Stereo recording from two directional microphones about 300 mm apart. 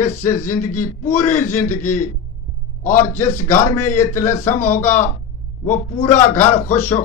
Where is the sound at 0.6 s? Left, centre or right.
Left.